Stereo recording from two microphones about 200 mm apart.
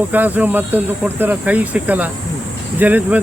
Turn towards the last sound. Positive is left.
turn(degrees=-10)  # may be behind; listen again after turning